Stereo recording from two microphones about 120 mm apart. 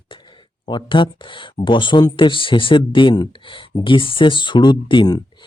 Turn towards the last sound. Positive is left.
turn(degrees=35)  # may be behind; listen again after turning